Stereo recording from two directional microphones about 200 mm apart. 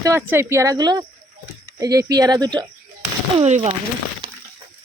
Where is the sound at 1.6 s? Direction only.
15° right (ahead or behind).